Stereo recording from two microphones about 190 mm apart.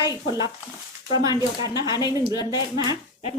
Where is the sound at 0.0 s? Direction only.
20° right (ahead or behind).